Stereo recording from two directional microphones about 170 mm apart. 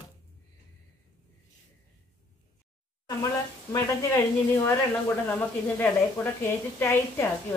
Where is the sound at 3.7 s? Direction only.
15° left (ahead or behind).